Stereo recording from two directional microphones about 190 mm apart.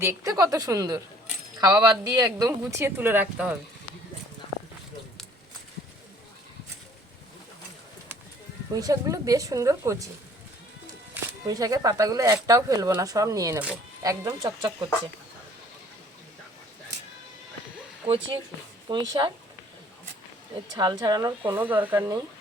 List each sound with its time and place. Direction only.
0.0 s speech: 15° right (ahead or behind)
8.7 s speech: 20° right (ahead or behind)
11.1 s speech: 20° right (ahead or behind)
18.0 s speech: 25° right (ahead or behind)
20.7 s speech: 20° right (ahead or behind)